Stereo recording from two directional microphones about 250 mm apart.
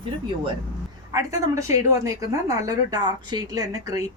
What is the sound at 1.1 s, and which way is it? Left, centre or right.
A woman's voice, centre.